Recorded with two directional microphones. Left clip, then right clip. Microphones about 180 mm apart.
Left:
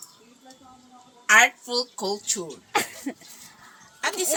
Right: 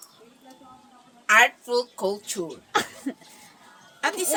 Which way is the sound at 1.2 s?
10° right (ahead or behind).